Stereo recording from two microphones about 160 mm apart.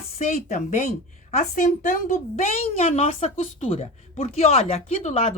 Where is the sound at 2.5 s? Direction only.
45° left (ahead or behind).